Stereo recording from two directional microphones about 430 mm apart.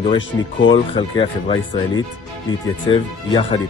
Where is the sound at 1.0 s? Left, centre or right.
Centre.